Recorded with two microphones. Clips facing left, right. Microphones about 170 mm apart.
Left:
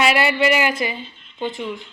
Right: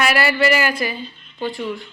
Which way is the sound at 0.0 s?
20° left (ahead or behind).